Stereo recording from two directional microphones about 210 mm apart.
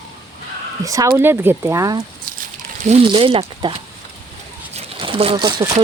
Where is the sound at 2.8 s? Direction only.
25° right (ahead or behind).